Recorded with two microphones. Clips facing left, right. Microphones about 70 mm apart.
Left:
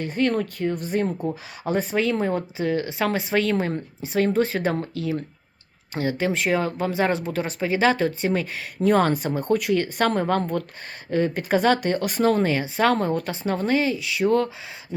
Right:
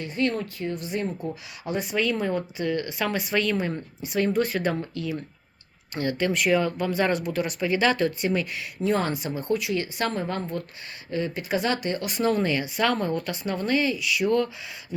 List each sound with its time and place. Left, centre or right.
0.0 s speech: left
8.8 s speech: left
10.1 s a woman's voice: left
11.1 s a woman's voice: left